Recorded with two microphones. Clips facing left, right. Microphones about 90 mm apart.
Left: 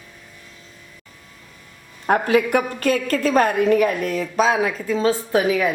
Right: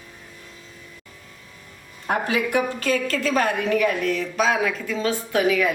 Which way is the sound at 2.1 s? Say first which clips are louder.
Left 6 dB; 50° left (ahead or behind).